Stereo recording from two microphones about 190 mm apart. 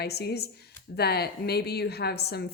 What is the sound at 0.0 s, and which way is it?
A woman's voice, 60° left (ahead or behind).